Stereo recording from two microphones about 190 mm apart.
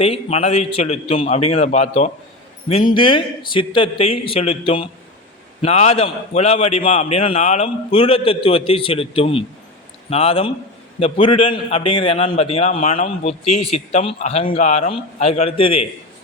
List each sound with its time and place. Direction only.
0.0 s a man's voice: 30° left (ahead or behind)